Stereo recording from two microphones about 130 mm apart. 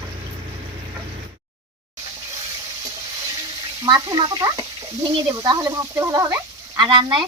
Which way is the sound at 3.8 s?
35° right (ahead or behind).